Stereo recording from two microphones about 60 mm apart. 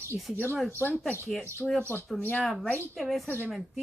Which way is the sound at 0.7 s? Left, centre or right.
Left.